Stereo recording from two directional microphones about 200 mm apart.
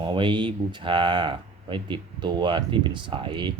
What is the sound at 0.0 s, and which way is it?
Speech, 25° right (ahead or behind).